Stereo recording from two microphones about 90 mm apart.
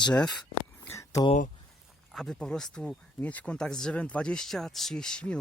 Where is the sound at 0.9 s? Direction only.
35° left (ahead or behind).